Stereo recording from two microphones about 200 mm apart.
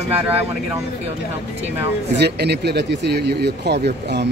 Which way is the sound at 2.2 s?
55° right (ahead or behind).